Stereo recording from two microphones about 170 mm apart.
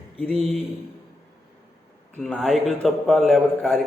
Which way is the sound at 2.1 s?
5° left (ahead or behind).